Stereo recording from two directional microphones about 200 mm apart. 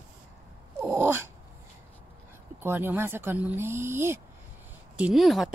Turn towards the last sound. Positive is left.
turn(degrees=0)  # may be behind; listen again after turning